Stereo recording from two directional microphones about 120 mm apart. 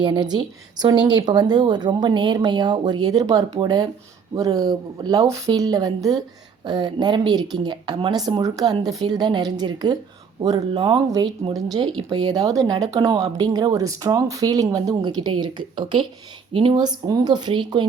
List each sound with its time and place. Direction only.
0.0 s a woman's voice: 40° right (ahead or behind)